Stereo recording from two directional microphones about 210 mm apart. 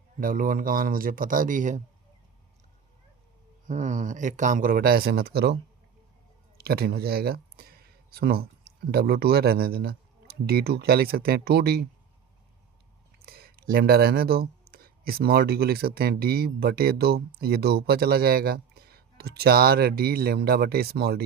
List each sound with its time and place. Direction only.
0.2 s speech: 40° right (ahead or behind)
3.7 s speech: 35° right (ahead or behind); by 5.5 s 50° right (ahead or behind)
6.6 s speech: 50° right (ahead or behind)
13.1 s speech: 45° right (ahead or behind)